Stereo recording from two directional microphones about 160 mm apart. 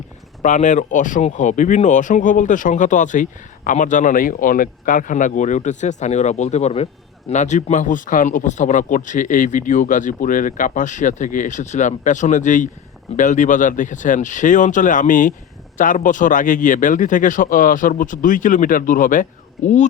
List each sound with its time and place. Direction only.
0.4 s speech: 50° left (ahead or behind)